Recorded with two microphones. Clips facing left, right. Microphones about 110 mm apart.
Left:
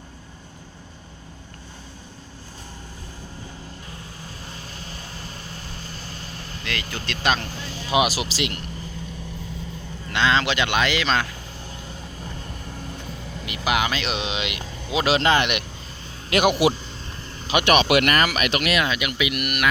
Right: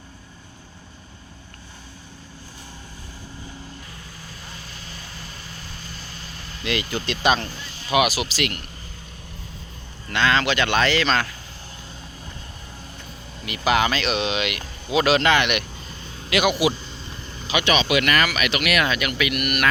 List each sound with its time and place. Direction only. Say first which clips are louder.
4.9 s vehicle: left 2 dB; 35° left (ahead or behind)
6.6 s speech: right 6 dB; 10° right (ahead or behind)
7.9 s speech: right 1 dB; 30° left (ahead or behind)
10.1 s speech: even; 20° left (ahead or behind)
13.4 s speech: right 3 dB; 15° left (ahead or behind); by 15.5 s 30° left (ahead or behind)
17.5 s speech: left 3 dB; 55° left (ahead or behind); by 18.8 s 35° left (ahead or behind)
18.8 s speech: right 1 dB; 15° left (ahead or behind)